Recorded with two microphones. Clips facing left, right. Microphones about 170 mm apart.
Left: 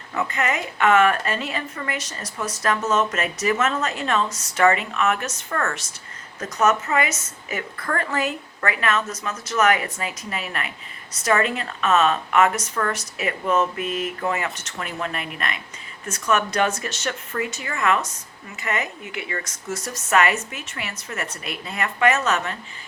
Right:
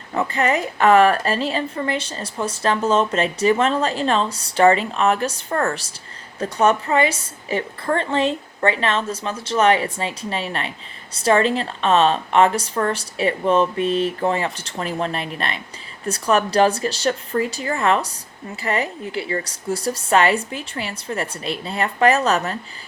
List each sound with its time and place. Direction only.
0.1 s a woman's voice: 35° right (ahead or behind)